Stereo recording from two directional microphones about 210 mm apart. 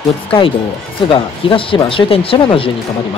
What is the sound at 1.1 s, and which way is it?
Speech, 25° left (ahead or behind).